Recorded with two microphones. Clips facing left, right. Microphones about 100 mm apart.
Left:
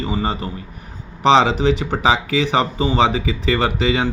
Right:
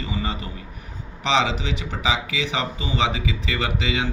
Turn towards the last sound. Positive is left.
turn(degrees=40)  # may be behind; listen again after turning